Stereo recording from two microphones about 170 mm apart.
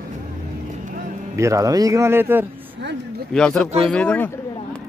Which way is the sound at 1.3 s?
20° right (ahead or behind).